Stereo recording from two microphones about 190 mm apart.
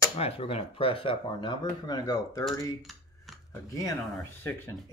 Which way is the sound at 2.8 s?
Centre (ahead or behind).